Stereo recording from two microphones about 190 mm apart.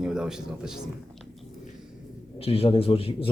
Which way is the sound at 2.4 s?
30° left (ahead or behind).